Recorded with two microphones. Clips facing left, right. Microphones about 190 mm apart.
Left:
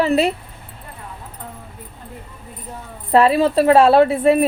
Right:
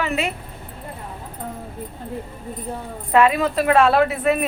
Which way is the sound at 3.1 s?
35° left (ahead or behind).